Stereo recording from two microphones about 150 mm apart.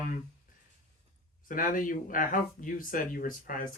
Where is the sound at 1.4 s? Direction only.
65° left (ahead or behind).